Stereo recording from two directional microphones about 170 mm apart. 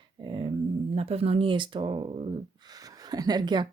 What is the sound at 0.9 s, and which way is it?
Speech, 35° right (ahead or behind).